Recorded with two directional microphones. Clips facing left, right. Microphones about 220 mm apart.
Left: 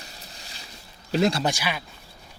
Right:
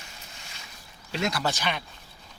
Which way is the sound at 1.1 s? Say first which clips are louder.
Left 7 dB; 35° left (ahead or behind).